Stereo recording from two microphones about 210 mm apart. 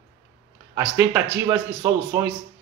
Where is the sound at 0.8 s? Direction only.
10° right (ahead or behind).